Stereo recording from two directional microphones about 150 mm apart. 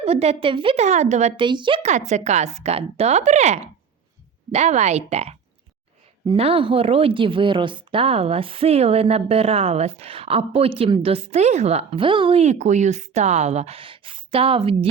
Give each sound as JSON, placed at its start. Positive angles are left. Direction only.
{"t": 0.0, "sound": "speech", "side_deg": -45}
{"t": 0.9, "sound": "a woman's voice", "side_deg": -50}
{"t": 1.4, "sound": "speech", "side_deg": -30}
{"t": 1.8, "sound": "a woman's voice", "side_deg": -50}
{"t": 11.9, "sound": "speech", "side_deg": -35}